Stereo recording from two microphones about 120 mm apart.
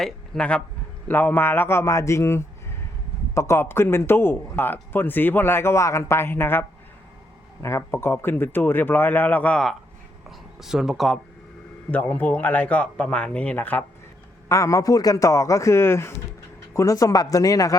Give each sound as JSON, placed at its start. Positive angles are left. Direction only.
{"t": 0.0, "sound": "a man's voice", "side_deg": 10}
{"t": 10.2, "sound": "speech", "side_deg": -5}
{"t": 11.9, "sound": "a man's voice", "side_deg": 15}
{"t": 14.5, "sound": "a man's voice", "side_deg": 25}